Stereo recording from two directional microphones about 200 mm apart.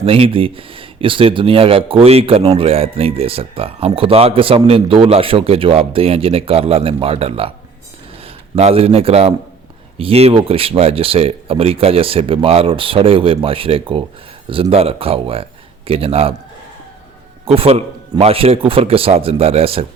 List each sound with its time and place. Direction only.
0.0 s speech: 30° right (ahead or behind)
17.4 s speech: 30° right (ahead or behind)